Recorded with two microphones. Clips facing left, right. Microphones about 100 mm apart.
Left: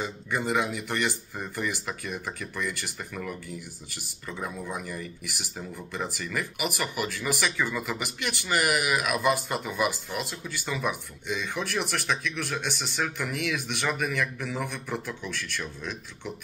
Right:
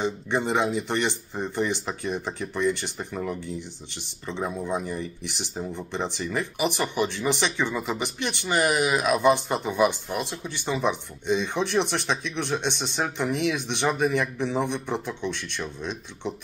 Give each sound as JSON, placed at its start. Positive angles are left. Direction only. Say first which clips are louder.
{"t": 0.0, "sound": "speech", "louder": "right 4 dB", "side_deg": -25}